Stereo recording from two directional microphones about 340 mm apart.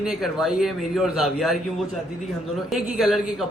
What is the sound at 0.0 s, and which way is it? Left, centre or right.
A man's voice, centre.